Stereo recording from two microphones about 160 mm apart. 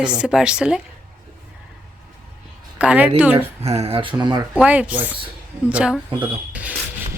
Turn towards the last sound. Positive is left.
turn(degrees=-10)  # may be behind; listen again after turning